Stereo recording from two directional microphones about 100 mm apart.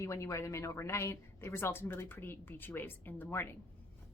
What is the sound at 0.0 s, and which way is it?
A woman's voice, 30° left (ahead or behind).